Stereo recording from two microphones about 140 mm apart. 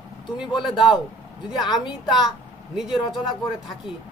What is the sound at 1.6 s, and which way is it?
Speech, 30° left (ahead or behind).